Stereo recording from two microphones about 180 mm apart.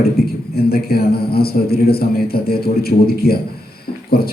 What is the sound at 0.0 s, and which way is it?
A man's voice, 60° left (ahead or behind).